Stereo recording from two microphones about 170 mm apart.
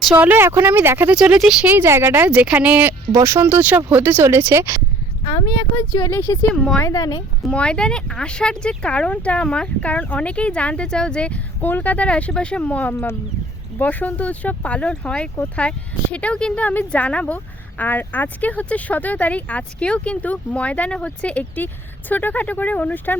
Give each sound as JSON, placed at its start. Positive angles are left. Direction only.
{"t": 0.0, "sound": "speech", "side_deg": -10}
{"t": 5.2, "sound": "speech", "side_deg": 25}
{"t": 7.4, "sound": "speech", "side_deg": 5}